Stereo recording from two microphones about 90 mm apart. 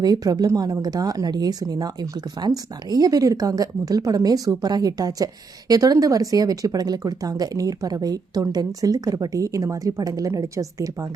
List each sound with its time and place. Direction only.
0.0 s speech: 45° right (ahead or behind)